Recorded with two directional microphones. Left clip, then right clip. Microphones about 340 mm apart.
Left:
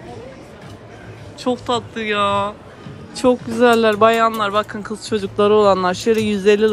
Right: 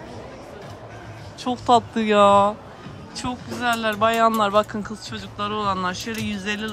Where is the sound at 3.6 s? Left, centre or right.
Centre.